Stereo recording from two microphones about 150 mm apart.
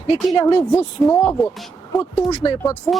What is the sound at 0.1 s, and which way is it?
Speech, 35° left (ahead or behind).